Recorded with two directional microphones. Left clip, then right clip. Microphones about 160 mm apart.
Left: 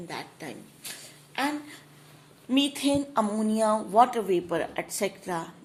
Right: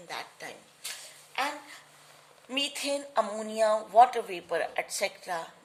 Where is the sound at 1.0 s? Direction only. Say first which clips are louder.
Left 2 dB; 20° left (ahead or behind).